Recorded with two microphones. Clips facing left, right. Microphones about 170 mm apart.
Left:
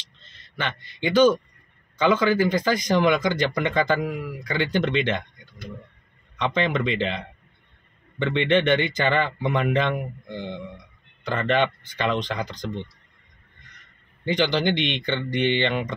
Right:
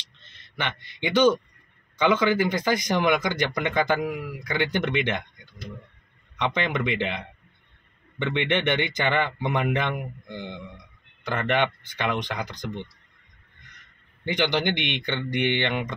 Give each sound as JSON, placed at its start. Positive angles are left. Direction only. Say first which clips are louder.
{"t": 0.6, "sound": "speech", "louder": "left 1 dB", "side_deg": -15}
{"t": 14.2, "sound": "speech", "louder": "left 2 dB", "side_deg": -15}